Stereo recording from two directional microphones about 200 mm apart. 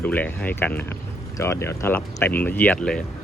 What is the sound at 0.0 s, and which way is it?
Speech, 10° left (ahead or behind).